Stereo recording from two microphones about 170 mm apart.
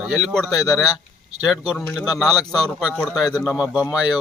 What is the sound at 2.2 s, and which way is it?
Speech, 25° left (ahead or behind).